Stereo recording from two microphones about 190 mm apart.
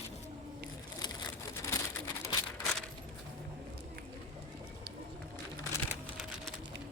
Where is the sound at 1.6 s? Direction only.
15° left (ahead or behind).